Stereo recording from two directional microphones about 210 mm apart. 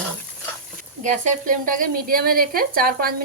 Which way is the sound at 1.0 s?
35° right (ahead or behind).